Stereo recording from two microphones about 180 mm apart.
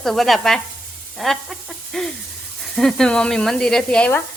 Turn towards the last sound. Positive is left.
turn(degrees=5)  # may be behind; listen again after turning